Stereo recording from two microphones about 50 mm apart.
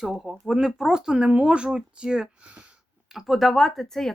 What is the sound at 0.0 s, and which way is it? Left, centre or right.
Speech, centre.